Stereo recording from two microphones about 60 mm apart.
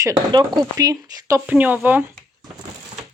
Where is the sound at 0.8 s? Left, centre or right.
Right.